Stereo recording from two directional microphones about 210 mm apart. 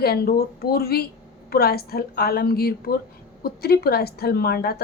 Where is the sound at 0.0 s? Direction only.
45° left (ahead or behind).